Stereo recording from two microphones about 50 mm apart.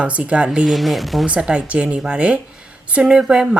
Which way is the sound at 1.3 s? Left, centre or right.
Right.